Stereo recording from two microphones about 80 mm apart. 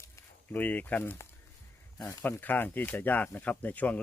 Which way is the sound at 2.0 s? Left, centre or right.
Left.